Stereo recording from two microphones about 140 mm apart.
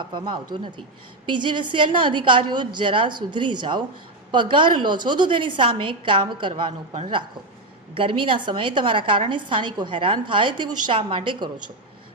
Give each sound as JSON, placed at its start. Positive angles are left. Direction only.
{"t": 0.0, "sound": "a woman's voice", "side_deg": -35}
{"t": 7.9, "sound": "a woman's voice", "side_deg": -40}